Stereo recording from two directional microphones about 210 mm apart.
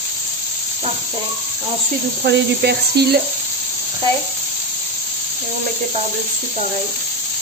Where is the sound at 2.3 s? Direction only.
50° right (ahead or behind).